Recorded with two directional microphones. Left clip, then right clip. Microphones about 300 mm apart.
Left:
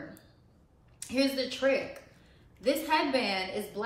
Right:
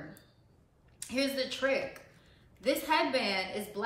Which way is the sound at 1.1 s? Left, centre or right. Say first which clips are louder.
Left 3 dB; centre.